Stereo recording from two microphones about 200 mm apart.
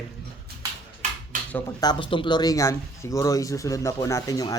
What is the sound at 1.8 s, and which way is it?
Speech, 20° left (ahead or behind).